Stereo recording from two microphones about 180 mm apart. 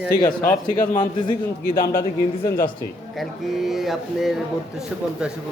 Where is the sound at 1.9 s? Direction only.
20° left (ahead or behind).